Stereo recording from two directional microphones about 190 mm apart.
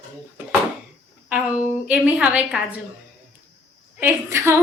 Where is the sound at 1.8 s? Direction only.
5° right (ahead or behind).